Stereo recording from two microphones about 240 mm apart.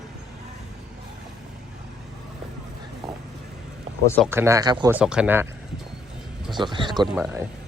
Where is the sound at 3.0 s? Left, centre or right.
Centre.